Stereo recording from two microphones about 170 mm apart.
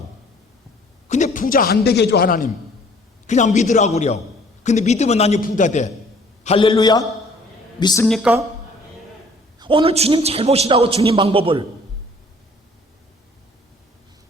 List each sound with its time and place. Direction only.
1.0 s speech: 45° left (ahead or behind)
3.2 s a man's voice: 45° left (ahead or behind)
6.4 s a man's voice: 35° left (ahead or behind)
8.0 s speech: centre (ahead or behind)
9.6 s a man's voice: 30° right (ahead or behind)